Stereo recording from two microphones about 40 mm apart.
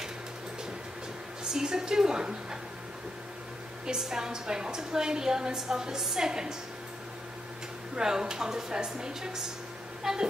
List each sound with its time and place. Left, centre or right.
1.4 s a woman's voice: centre
3.8 s a woman's voice: centre
7.9 s a woman's voice: centre